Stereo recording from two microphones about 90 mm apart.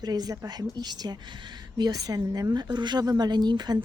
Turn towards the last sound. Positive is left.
turn(degrees=-55)  # may be behind; listen again after turning